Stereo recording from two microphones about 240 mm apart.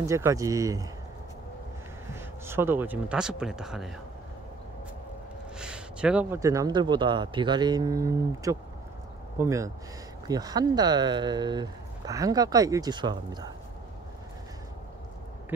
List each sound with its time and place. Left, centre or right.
0.0 s speech: centre
2.1 s speech: centre
5.6 s speech: centre